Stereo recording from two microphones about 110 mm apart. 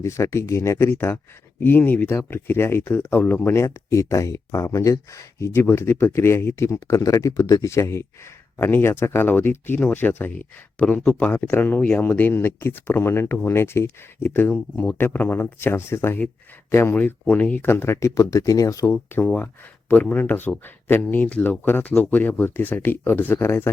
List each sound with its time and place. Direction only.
0.0 s speech: 25° left (ahead or behind)